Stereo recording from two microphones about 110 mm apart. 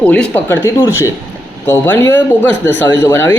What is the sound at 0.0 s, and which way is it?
Speech, 10° left (ahead or behind).